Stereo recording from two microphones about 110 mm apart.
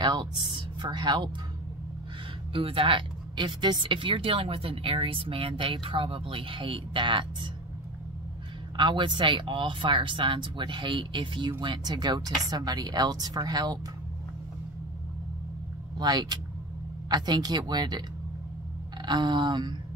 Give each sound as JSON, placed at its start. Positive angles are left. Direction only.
{"t": 0.0, "sound": "speech", "side_deg": -45}
{"t": 2.5, "sound": "speech", "side_deg": -55}
{"t": 8.7, "sound": "speech", "side_deg": -45}
{"t": 16.0, "sound": "speech", "side_deg": -40}
{"t": 19.0, "sound": "speech", "side_deg": -40}